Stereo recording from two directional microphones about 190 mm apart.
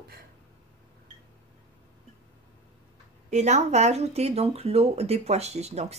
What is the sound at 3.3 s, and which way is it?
Speech, 35° right (ahead or behind).